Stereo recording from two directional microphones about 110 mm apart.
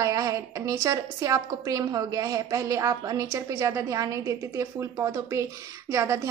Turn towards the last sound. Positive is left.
turn(degrees=-25)  # may be behind; listen again after turning